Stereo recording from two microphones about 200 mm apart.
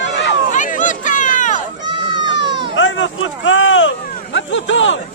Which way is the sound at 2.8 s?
70° left (ahead or behind).